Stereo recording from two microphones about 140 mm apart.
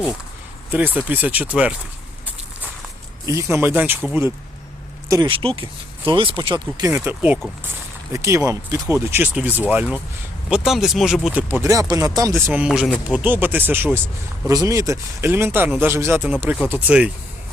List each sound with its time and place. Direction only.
0.7 s speech: 10° right (ahead or behind)
3.2 s speech: 20° right (ahead or behind)
5.3 s speech: 40° right (ahead or behind); by 12.5 s 25° right (ahead or behind)
12.5 s speech: 5° right (ahead or behind)